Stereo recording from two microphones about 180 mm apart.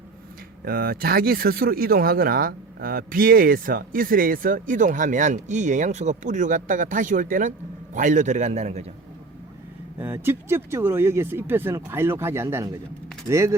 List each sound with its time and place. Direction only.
0.6 s a man's voice: 55° right (ahead or behind); by 8.9 s 40° right (ahead or behind)
10.0 s speech: 15° right (ahead or behind)